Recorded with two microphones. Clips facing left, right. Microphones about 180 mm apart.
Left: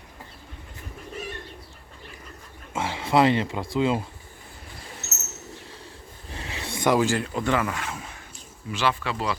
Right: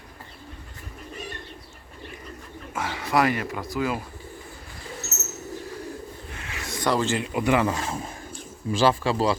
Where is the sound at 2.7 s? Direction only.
25° left (ahead or behind).